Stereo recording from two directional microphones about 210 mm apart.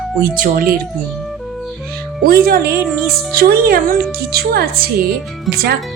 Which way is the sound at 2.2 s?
45° right (ahead or behind).